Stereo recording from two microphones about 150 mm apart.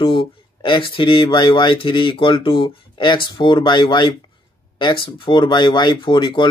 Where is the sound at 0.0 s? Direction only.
35° left (ahead or behind).